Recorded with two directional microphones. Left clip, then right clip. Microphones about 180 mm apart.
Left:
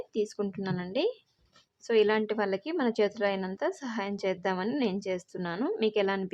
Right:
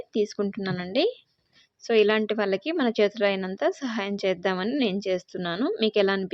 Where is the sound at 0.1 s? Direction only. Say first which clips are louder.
Right 6 dB; 15° right (ahead or behind).